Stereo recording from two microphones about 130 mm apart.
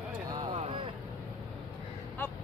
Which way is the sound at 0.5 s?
45° right (ahead or behind).